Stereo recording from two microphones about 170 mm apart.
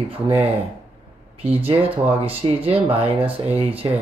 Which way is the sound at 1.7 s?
35° right (ahead or behind).